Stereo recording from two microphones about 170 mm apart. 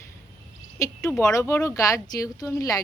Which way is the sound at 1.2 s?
20° left (ahead or behind).